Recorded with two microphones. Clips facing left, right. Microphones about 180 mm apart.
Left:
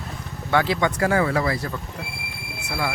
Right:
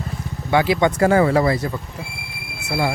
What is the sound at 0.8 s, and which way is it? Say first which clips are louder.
Speech: right 5 dB; 25° right (ahead or behind).